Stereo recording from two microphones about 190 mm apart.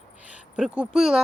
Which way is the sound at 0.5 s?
5° right (ahead or behind).